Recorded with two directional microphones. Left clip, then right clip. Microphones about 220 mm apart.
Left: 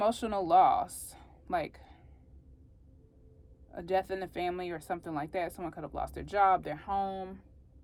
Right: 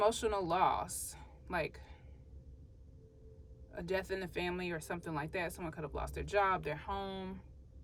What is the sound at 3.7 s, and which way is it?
Speech, 15° left (ahead or behind).